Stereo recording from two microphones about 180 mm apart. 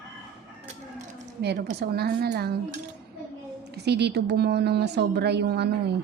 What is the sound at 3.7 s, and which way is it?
A woman's voice, 65° right (ahead or behind).